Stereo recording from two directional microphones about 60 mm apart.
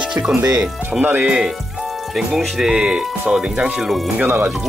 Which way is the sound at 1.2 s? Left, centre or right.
Centre.